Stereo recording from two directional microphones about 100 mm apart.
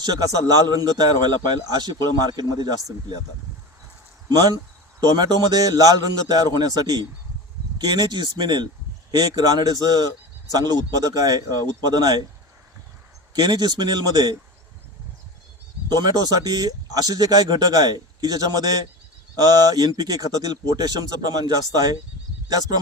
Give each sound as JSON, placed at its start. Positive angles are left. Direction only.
{"t": 0.0, "sound": "a man's voice", "side_deg": -40}
{"t": 4.9, "sound": "a man's voice", "side_deg": -40}
{"t": 13.3, "sound": "a man's voice", "side_deg": -40}
{"t": 15.9, "sound": "speech", "side_deg": -40}